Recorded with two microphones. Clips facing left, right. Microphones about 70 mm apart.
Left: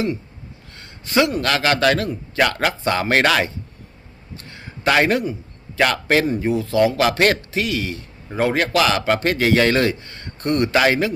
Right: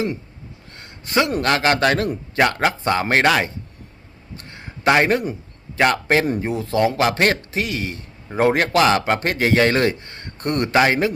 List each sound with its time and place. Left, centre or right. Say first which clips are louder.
1.4 s a man's voice: right 1 dB; right
4.9 s a man's voice: right 1 dB; right
6.4 s a man's voice: left 2 dB; right